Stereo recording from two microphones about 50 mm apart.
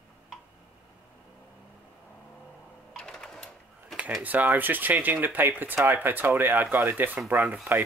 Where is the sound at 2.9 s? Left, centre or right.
Centre.